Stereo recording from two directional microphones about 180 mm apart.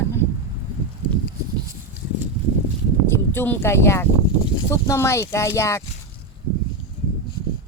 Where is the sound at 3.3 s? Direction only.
10° left (ahead or behind).